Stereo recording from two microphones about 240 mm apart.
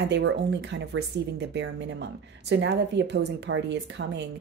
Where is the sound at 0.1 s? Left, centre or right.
Right.